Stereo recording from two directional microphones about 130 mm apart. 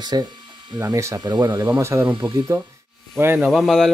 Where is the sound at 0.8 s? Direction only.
20° right (ahead or behind).